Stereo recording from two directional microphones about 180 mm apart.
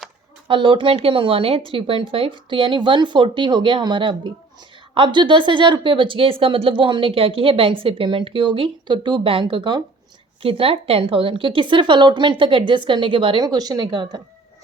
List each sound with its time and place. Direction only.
0.4 s speech: 25° right (ahead or behind)